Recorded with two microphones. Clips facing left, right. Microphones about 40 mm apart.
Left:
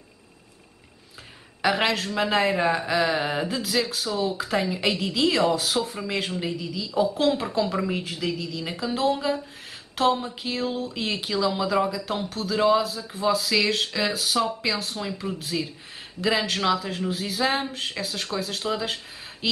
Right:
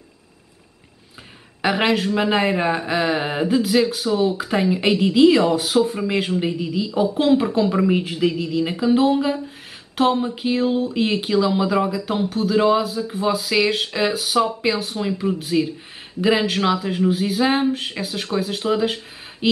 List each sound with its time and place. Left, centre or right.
1.6 s speech: centre
6.4 s speech: centre
19.4 s a sound: centre